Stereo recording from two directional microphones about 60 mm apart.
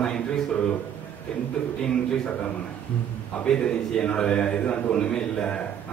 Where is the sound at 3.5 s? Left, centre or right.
Centre.